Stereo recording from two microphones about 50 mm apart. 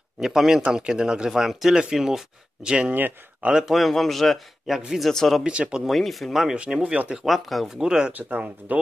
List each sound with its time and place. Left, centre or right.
0.2 s speech: centre
3.6 s a man's voice: centre
4.6 s speech: centre
5.0 s a man's voice: centre
5.4 s speech: centre
5.9 s a man's voice: centre
6.5 s speech: centre
7.2 s a man's voice: centre
7.7 s speech: centre
8.1 s speech: right